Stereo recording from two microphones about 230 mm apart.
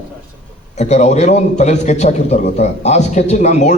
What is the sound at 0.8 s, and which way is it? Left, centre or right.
A man's voice, left.